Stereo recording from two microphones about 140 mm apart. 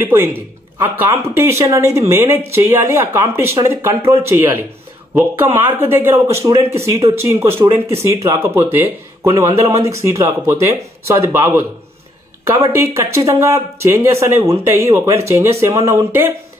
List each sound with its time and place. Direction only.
0.0 s speech: 15° right (ahead or behind)